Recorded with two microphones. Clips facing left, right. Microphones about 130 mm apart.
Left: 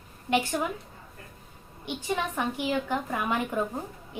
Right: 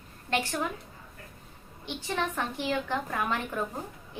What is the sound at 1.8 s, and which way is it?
A woman's voice, 15° left (ahead or behind).